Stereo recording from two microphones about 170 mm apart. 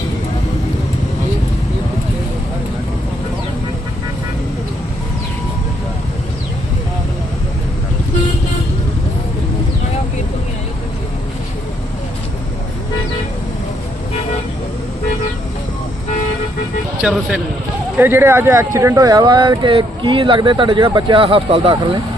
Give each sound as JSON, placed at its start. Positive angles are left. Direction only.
{"t": 17.0, "sound": "speech", "side_deg": -5}